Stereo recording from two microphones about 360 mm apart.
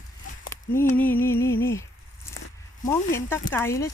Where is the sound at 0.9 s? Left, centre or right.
Centre.